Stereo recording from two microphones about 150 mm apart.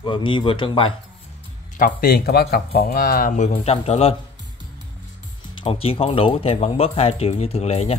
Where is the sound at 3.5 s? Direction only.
45° left (ahead or behind).